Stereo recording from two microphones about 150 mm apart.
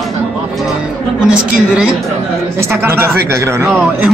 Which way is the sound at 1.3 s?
5° right (ahead or behind).